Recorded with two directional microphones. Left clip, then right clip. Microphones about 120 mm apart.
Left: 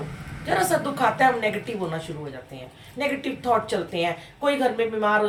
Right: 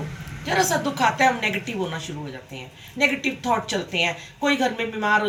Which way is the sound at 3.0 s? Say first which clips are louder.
Right 4 dB; 30° left (ahead or behind).